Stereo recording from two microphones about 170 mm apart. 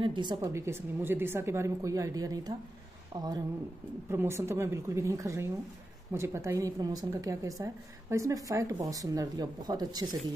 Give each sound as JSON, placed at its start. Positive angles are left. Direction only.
{"t": 0.0, "sound": "a woman's voice", "side_deg": -25}